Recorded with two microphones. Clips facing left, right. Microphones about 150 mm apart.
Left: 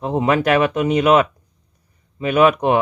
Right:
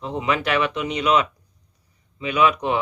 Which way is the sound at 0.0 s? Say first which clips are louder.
Left 6 dB; 45° left (ahead or behind).